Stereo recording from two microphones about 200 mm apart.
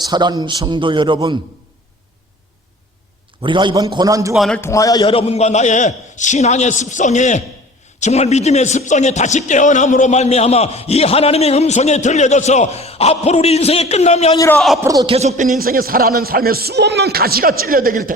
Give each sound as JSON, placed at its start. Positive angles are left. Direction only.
{"t": 0.0, "sound": "a man's voice", "side_deg": -20}
{"t": 3.4, "sound": "a man's voice", "side_deg": -25}
{"t": 4.4, "sound": "a man's voice", "side_deg": 5}
{"t": 14.3, "sound": "a man's voice", "side_deg": 15}
{"t": 14.8, "sound": "speech", "side_deg": -20}
{"t": 15.1, "sound": "speech", "side_deg": -35}